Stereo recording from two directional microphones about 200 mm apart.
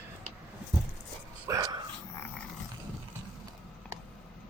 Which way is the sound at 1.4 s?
15° right (ahead or behind).